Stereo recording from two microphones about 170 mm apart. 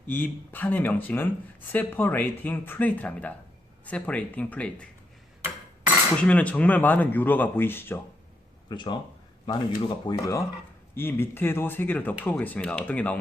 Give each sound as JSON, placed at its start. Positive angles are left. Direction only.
{"t": 0.1, "sound": "speech", "side_deg": 10}
{"t": 6.2, "sound": "speech", "side_deg": 10}
{"t": 8.7, "sound": "speech", "side_deg": 25}